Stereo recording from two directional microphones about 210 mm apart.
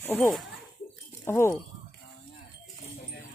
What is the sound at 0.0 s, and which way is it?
Speech, 10° left (ahead or behind).